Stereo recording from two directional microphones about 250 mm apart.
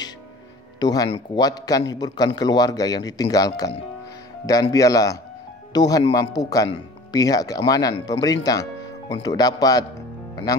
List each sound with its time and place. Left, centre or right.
0.7 s a man's voice: centre